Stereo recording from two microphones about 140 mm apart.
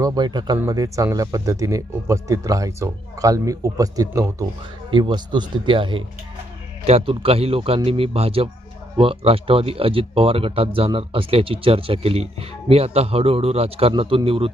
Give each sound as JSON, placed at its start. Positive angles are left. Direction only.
{"t": 0.0, "sound": "speech", "side_deg": -30}
{"t": 4.9, "sound": "speech", "side_deg": -35}